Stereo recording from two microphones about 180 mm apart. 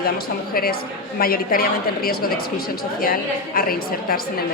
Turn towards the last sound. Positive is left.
turn(degrees=55)  # may be behind; listen again after turning